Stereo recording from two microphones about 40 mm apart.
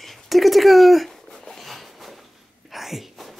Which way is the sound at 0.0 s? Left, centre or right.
Centre.